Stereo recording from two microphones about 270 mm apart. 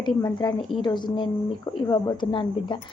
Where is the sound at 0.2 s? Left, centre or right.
Centre.